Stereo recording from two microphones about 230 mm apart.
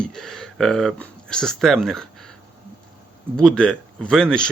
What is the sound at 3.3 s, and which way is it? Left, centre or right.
Speech, centre.